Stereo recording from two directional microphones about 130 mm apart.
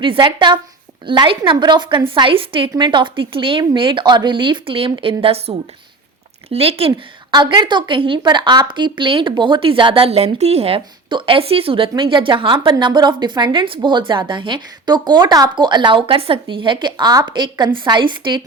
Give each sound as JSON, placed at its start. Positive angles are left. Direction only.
{"t": 0.0, "sound": "a woman's voice", "side_deg": -40}
{"t": 7.3, "sound": "a woman's voice", "side_deg": -35}